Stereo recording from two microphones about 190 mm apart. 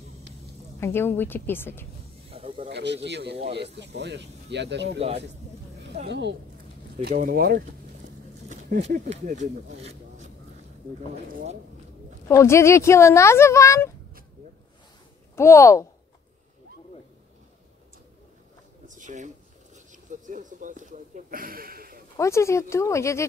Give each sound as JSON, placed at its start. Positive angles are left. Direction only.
{"t": 0.7, "sound": "speech", "side_deg": 10}
{"t": 2.3, "sound": "snake", "side_deg": -30}
{"t": 2.7, "sound": "speech", "side_deg": -65}
{"t": 6.0, "sound": "speech", "side_deg": -65}
{"t": 7.2, "sound": "speech", "side_deg": -50}
{"t": 9.2, "sound": "speech", "side_deg": -40}
{"t": 12.3, "sound": "speech", "side_deg": 15}
{"t": 15.3, "sound": "speech", "side_deg": 15}
{"t": 18.9, "sound": "a sound", "side_deg": -40}
{"t": 22.1, "sound": "speech", "side_deg": 15}